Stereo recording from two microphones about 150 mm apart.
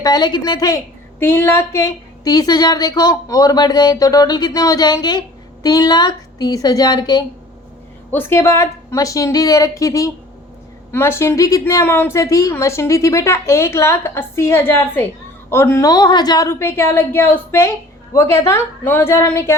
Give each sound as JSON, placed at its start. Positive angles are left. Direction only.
{"t": 0.0, "sound": "speech", "side_deg": 25}
{"t": 8.1, "sound": "a woman's voice", "side_deg": 15}